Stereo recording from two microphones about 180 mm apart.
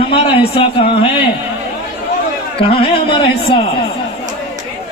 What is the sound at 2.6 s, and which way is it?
Speech, 30° left (ahead or behind).